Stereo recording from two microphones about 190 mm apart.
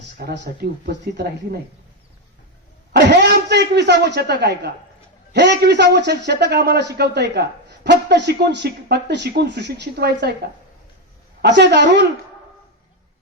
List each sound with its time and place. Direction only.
0.2 s a man's voice: 55° right (ahead or behind)
2.9 s a man's voice: 60° right (ahead or behind)
11.4 s a man's voice: 65° right (ahead or behind)